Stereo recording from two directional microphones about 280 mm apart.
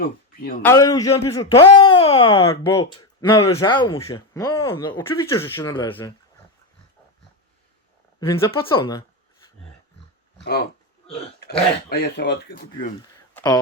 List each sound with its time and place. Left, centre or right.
0.3 s speech: left
0.6 s speech: centre
8.2 s speech: centre
11.4 s speech: left
13.0 s a sound: centre